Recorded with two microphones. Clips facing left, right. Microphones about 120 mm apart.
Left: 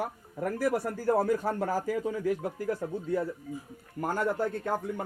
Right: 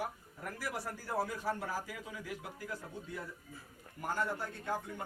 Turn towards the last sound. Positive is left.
turn(degrees=50)  # may be behind; listen again after turning